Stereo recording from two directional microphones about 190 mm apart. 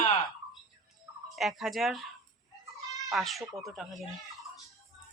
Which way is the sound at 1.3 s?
Centre (ahead or behind).